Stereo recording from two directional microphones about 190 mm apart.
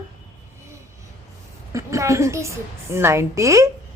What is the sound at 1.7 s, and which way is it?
A woman's voice, 15° right (ahead or behind).